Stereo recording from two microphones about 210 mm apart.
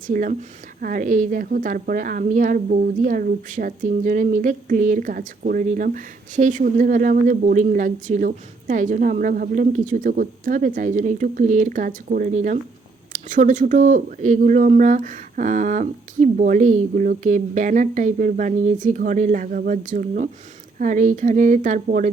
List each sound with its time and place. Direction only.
0.1 s a woman's voice: 40° right (ahead or behind)